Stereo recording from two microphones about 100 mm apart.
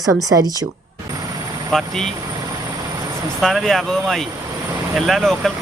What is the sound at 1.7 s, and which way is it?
Speech, 5° left (ahead or behind).